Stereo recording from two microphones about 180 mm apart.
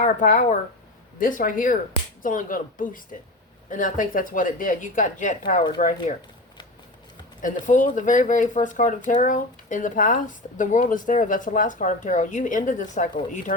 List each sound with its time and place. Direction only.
0.0 s speech: 40° left (ahead or behind)
7.6 s speech: 45° left (ahead or behind)